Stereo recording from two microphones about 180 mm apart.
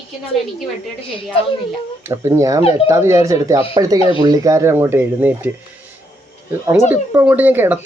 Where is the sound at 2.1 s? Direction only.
15° right (ahead or behind).